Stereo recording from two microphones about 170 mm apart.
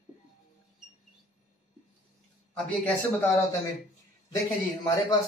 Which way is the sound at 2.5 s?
5° left (ahead or behind).